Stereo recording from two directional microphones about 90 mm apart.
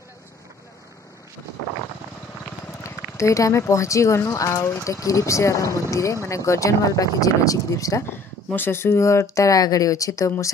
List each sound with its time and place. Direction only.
2.8 s speech: 35° left (ahead or behind)
8.5 s speech: 25° left (ahead or behind)